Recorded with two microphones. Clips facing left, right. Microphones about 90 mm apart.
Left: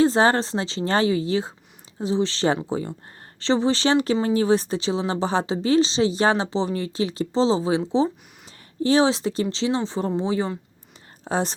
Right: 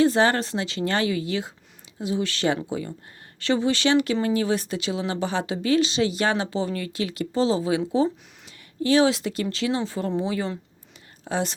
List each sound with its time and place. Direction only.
0.0 s speech: 30° left (ahead or behind)
8.8 s speech: 30° left (ahead or behind)
11.3 s speech: 35° left (ahead or behind)